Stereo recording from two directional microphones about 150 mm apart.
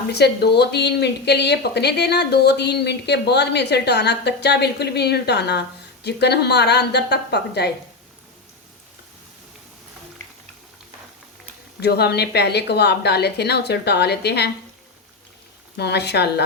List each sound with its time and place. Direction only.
0.1 s speech: 90° left
11.8 s speech: 90° left
15.8 s speech: 90° left